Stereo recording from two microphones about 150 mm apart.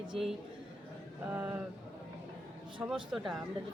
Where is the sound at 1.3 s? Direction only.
10° right (ahead or behind).